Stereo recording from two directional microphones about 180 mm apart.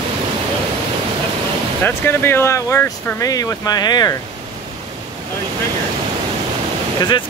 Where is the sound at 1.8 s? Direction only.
10° left (ahead or behind).